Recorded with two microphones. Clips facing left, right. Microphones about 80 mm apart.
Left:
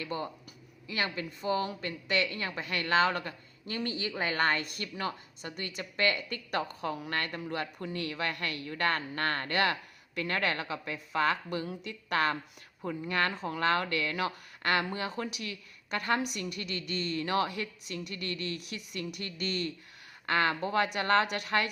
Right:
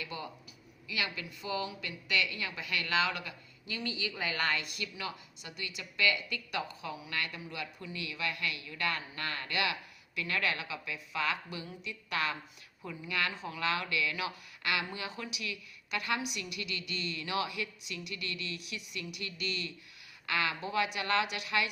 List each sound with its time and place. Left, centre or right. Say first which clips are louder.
0.0 s a woman's voice: left 5 dB; left